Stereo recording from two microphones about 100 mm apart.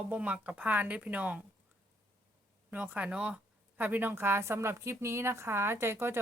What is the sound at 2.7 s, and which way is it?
Speech, 15° right (ahead or behind).